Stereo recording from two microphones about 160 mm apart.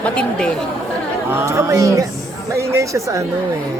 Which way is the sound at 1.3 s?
15° right (ahead or behind).